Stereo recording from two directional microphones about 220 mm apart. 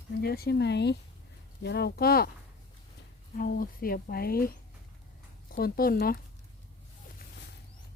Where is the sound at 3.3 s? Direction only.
40° left (ahead or behind).